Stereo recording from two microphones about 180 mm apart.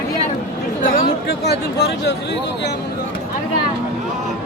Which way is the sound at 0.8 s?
50° left (ahead or behind).